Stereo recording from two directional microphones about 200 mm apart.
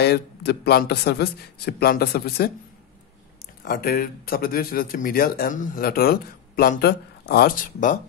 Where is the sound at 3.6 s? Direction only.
45° left (ahead or behind).